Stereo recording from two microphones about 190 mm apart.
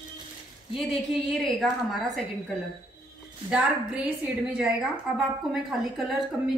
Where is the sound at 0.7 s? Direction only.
Centre (ahead or behind).